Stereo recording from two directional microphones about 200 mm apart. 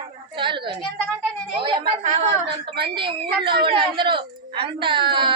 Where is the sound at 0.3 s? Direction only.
25° right (ahead or behind).